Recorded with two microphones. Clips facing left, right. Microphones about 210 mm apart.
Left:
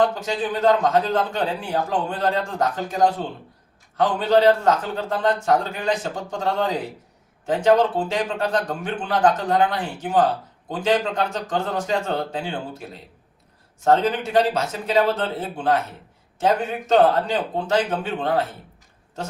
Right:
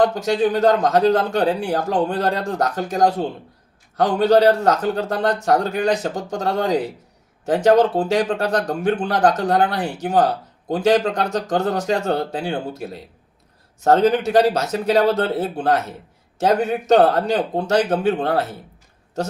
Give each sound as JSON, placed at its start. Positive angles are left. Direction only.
{"t": 0.2, "sound": "speech", "side_deg": -40}
{"t": 13.8, "sound": "speech", "side_deg": -40}